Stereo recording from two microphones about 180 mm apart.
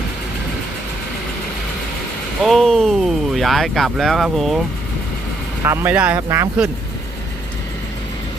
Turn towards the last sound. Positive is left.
turn(degrees=-15)  # may be behind; listen again after turning